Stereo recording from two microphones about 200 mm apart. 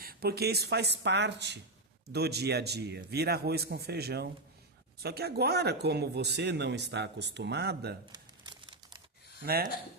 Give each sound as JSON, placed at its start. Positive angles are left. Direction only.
{"t": 0.0, "sound": "a man's voice", "side_deg": -50}
{"t": 8.1, "sound": "crumpling", "side_deg": -20}